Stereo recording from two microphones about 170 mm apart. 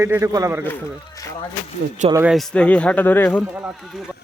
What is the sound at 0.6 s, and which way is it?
Speech, 15° left (ahead or behind).